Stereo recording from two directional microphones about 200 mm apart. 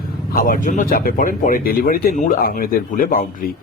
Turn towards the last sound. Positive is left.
turn(degrees=45)  # may be behind; listen again after turning